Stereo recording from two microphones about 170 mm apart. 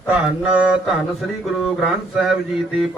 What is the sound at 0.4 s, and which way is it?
Mantra, 5° right (ahead or behind).